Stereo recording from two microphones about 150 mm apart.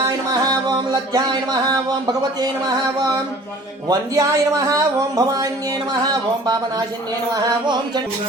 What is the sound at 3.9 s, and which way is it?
A man's voice, 25° right (ahead or behind).